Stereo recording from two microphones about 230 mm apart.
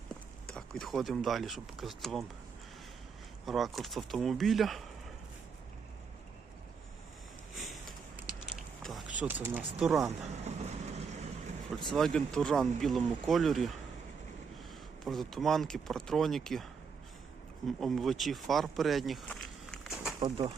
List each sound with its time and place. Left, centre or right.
0.5 s speech: centre
3.4 s speech: centre
7.5 s a sound: centre
9.2 s speech: centre
10.1 s vehicle: right
11.9 s speech: centre
15.0 s speech: centre
17.7 s speech: centre
20.1 s speech: centre